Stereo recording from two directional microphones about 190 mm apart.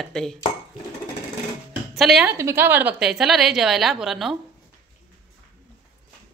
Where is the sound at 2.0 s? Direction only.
Centre (ahead or behind).